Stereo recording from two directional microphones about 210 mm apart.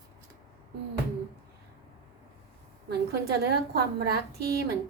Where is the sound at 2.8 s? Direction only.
50° right (ahead or behind).